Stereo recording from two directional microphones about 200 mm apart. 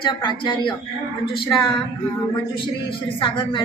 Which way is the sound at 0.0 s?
25° left (ahead or behind).